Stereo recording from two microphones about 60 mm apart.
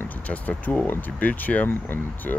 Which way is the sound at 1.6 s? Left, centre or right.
Left.